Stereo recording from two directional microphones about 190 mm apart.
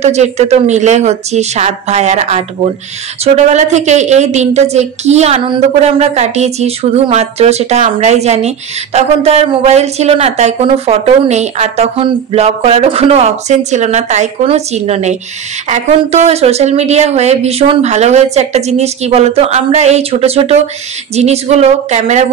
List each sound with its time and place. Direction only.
0.0 s a woman's voice: 35° right (ahead or behind)